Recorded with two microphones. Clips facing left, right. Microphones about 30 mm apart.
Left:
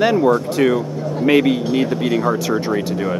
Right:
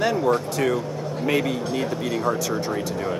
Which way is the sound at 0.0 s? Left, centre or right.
Left.